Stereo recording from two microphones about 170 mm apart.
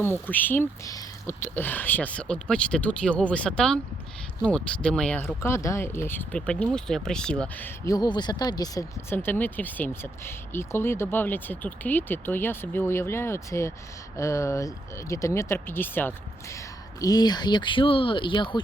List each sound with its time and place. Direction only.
0.3 s speech: 10° left (ahead or behind)
7.9 s speech: 25° left (ahead or behind)